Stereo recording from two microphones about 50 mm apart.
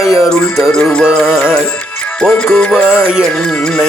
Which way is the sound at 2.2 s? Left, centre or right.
Centre.